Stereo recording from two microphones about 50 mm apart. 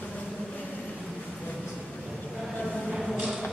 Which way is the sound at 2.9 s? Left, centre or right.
Centre.